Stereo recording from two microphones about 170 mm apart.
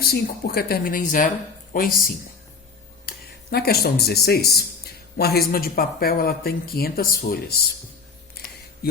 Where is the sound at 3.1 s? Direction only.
65° left (ahead or behind).